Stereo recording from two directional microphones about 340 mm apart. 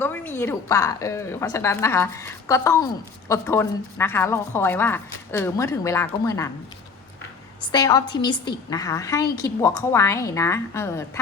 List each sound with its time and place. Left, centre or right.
0.0 s a woman's voice: centre
7.7 s a woman's voice: centre